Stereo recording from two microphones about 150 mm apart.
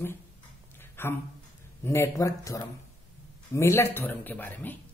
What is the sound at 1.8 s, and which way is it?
Speech, 20° left (ahead or behind).